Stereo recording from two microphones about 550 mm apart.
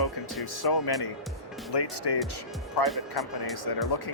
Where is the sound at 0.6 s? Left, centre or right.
Left.